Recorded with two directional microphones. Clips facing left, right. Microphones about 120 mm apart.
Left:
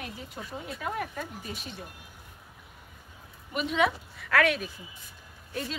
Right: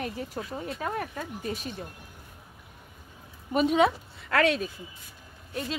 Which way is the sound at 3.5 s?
40° right (ahead or behind).